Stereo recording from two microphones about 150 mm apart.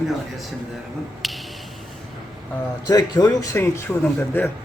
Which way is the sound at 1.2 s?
Centre (ahead or behind).